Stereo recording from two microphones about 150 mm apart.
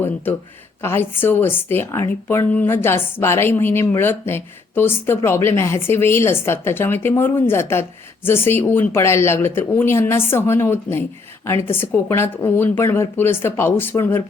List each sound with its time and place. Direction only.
0.8 s a woman's voice: 15° left (ahead or behind)